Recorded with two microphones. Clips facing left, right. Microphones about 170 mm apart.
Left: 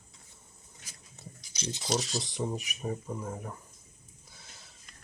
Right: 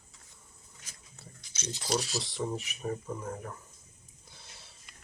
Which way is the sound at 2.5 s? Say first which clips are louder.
Even; 15° left (ahead or behind).